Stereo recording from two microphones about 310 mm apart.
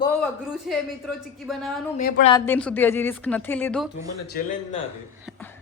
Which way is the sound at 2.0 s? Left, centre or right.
Left.